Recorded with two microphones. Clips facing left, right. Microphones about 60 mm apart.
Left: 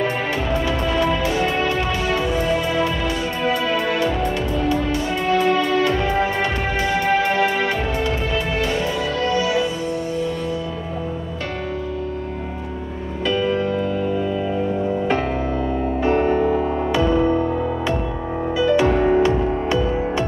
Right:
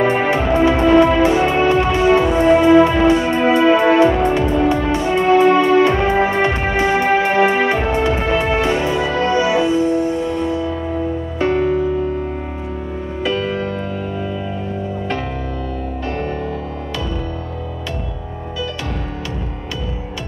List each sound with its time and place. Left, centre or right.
0.0 s music: right
13.2 s music: centre
17.0 s music: left
18.7 s music: left